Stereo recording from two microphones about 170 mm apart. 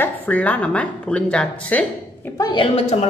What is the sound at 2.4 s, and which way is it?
Speech, 30° left (ahead or behind).